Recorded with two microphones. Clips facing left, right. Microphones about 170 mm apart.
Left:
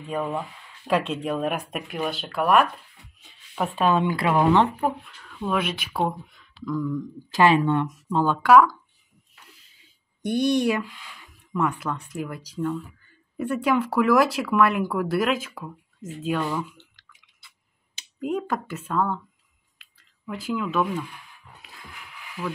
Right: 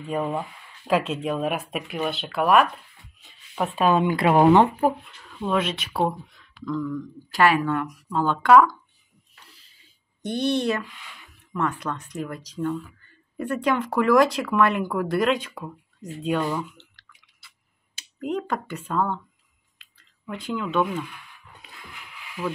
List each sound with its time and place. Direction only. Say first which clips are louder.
0.0 s speech: right 1 dB; 10° right (ahead or behind)
4.8 s speech: right 3 dB; 5° right (ahead or behind)
6.6 s speech: left 1 dB; 10° left (ahead or behind)
8.3 s speech: even; 5° left (ahead or behind)
10.2 s speech: left 2 dB; 10° left (ahead or behind)
16.7 s drip: even; 20° left (ahead or behind)
18.2 s speech: left 1 dB; 5° left (ahead or behind)
19.8 s a sound: left 3 dB; centre (ahead or behind)